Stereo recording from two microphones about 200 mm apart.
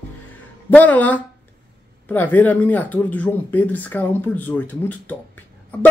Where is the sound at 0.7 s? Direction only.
10° left (ahead or behind).